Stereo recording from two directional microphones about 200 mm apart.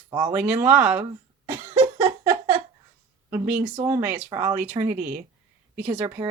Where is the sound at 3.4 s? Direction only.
10° right (ahead or behind).